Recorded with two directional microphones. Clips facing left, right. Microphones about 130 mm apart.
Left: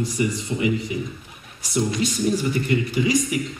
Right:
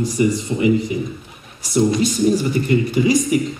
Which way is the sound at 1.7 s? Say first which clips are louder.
Right 6 dB; 35° right (ahead or behind).